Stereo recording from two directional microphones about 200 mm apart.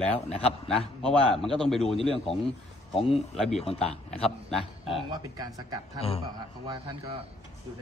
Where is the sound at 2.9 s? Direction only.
30° left (ahead or behind).